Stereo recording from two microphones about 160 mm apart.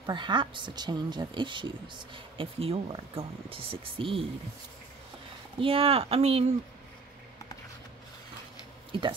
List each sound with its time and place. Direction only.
0.0 s speech: 30° right (ahead or behind)
5.6 s speech: 35° right (ahead or behind)